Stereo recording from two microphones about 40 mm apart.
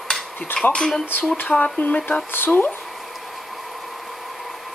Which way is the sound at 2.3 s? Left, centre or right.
Left.